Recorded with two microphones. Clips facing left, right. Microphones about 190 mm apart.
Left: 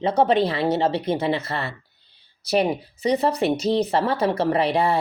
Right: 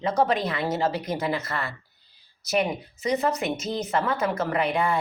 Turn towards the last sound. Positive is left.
turn(degrees=35)  # may be behind; listen again after turning